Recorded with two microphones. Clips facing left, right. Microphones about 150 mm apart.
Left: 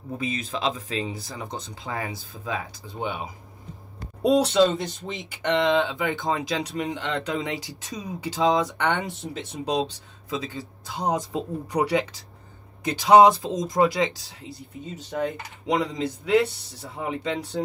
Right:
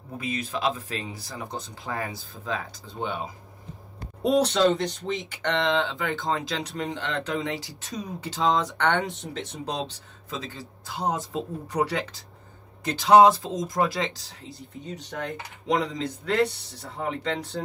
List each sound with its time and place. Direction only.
0.2 s speech: 25° left (ahead or behind)
15.1 s speech: 10° left (ahead or behind)